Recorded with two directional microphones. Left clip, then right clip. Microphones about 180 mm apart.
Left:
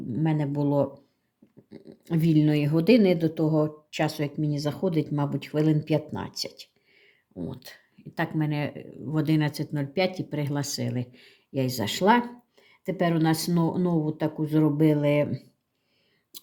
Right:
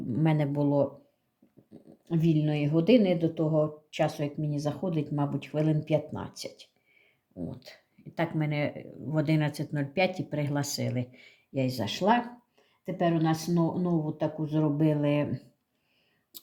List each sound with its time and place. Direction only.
0.1 s speech: centre (ahead or behind)
1.7 s speech: 25° left (ahead or behind)